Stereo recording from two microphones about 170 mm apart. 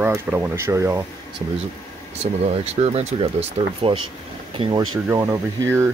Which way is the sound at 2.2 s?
40° right (ahead or behind).